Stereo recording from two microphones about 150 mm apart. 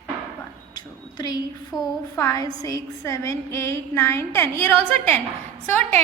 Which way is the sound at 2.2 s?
25° left (ahead or behind).